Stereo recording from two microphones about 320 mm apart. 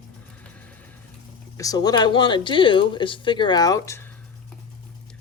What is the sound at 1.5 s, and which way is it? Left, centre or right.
Speech, centre.